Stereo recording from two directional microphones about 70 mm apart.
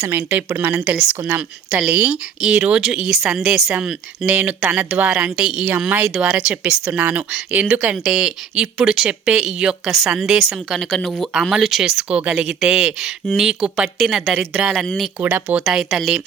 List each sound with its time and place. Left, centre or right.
0.2 s speech: right
0.8 s speech: centre
1.2 s speech: right; by 3.8 s centre
4.3 s speech: right
10.8 s speech: centre
12.3 s speech: centre
14.8 s speech: centre
15.3 s speech: right
15.6 s speech: centre